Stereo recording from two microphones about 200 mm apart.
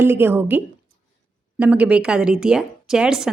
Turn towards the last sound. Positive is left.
turn(degrees=-5)  # may be behind; listen again after turning